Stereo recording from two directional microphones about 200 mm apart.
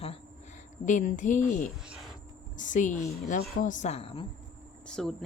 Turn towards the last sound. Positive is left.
turn(degrees=5)  # may be behind; listen again after turning